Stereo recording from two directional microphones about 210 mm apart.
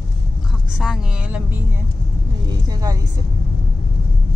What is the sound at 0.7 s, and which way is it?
Speech, centre (ahead or behind).